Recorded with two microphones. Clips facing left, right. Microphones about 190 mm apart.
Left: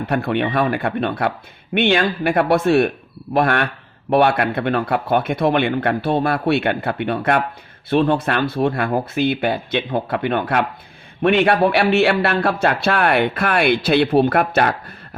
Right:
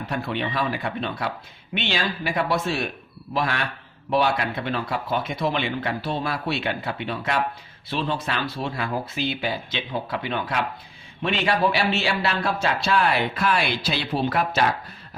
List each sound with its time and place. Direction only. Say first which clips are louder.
0.1 s speech: left 8 dB; 60° left (ahead or behind)